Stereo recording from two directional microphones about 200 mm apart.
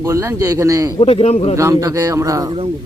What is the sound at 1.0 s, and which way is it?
Speech, 30° left (ahead or behind).